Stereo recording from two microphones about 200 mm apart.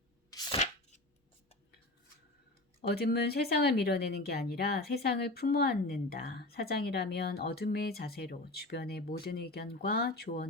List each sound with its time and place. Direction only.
0.5 s chopping: 35° left (ahead or behind)
2.8 s a woman's voice: 50° left (ahead or behind)